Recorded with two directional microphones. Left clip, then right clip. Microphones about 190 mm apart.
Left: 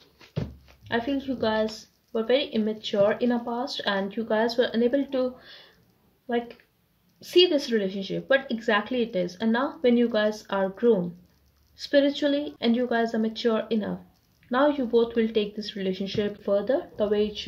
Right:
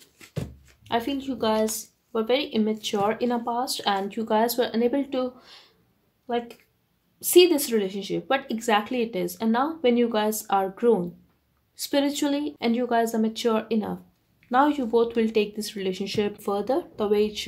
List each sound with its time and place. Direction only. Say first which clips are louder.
0.8 s a woman's voice: right 1 dB; 45° right (ahead or behind)
7.2 s a woman's voice: right 3 dB; 45° right (ahead or behind)